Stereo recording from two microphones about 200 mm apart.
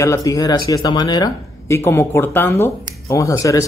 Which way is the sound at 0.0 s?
15° left (ahead or behind).